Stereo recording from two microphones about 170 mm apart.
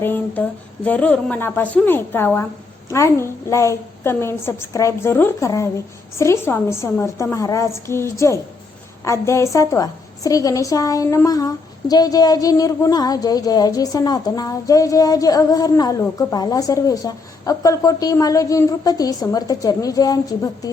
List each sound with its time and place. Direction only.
0.0 s a woman's voice: 10° left (ahead or behind)